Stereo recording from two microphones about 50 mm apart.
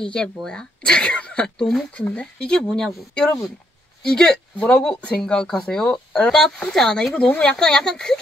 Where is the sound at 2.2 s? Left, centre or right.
Centre.